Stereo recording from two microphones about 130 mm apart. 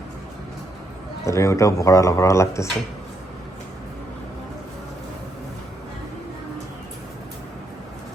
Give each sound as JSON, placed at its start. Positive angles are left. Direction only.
{"t": 1.2, "sound": "speech", "side_deg": 25}